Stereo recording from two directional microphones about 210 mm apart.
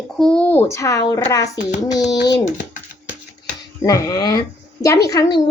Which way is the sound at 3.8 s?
15° left (ahead or behind).